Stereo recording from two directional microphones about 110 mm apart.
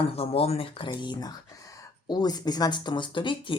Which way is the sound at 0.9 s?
40° left (ahead or behind).